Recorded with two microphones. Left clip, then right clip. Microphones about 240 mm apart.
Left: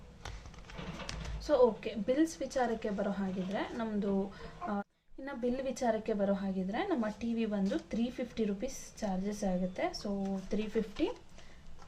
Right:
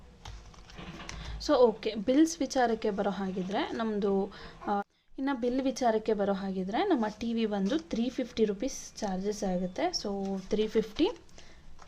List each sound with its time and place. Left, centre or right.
1.4 s a woman's voice: right